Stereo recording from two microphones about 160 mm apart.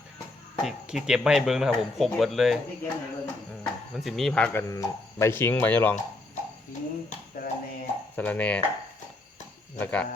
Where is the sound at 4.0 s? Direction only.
Centre (ahead or behind).